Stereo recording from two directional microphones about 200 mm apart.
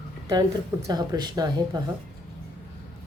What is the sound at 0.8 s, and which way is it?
Speech, 20° right (ahead or behind).